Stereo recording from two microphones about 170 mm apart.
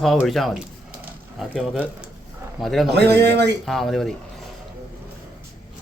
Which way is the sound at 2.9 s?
80° right.